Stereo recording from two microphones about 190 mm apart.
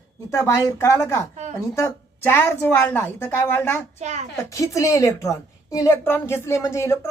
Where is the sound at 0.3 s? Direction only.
15° left (ahead or behind).